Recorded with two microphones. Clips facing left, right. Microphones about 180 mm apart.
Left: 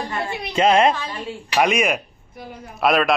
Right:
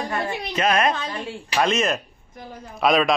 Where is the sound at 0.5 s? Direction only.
25° left (ahead or behind).